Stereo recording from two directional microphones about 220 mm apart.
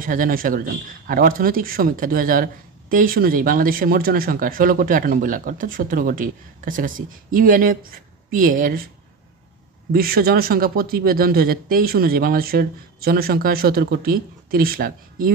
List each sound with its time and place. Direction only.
0.0 s a man's voice: 40° right (ahead or behind)
9.9 s speech: 45° right (ahead or behind)